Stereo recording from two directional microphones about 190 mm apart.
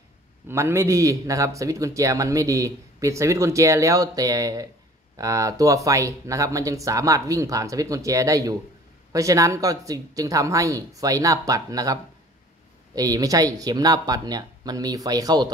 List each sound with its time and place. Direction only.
0.5 s speech: 15° right (ahead or behind)